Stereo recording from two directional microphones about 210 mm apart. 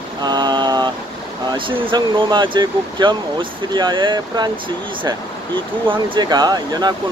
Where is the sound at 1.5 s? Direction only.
20° right (ahead or behind).